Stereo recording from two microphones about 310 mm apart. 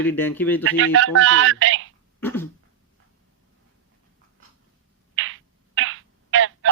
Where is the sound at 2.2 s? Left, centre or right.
Centre.